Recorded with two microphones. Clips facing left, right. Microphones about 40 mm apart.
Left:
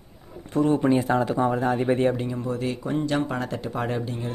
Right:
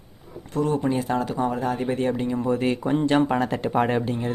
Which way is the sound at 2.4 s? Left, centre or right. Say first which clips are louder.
Right 7 dB; right.